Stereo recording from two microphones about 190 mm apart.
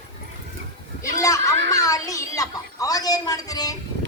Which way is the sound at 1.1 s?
15° left (ahead or behind).